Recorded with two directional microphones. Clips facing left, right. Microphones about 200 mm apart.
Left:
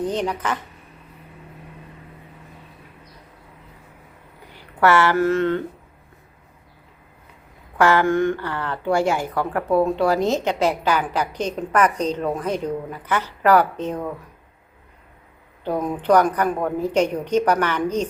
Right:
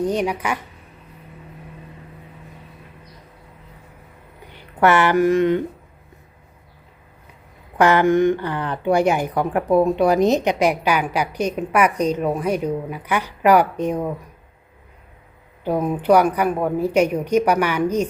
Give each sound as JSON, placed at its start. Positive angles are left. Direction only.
{"t": 0.0, "sound": "speech", "side_deg": -10}
{"t": 4.8, "sound": "speech", "side_deg": -20}
{"t": 7.8, "sound": "speech", "side_deg": -20}
{"t": 15.6, "sound": "speech", "side_deg": -10}